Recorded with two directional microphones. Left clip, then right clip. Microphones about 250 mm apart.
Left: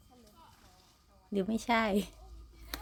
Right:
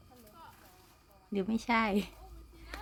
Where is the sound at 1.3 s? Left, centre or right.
Centre.